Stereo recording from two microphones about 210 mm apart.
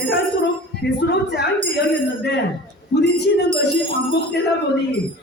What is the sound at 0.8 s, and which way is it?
Speech, 55° left (ahead or behind).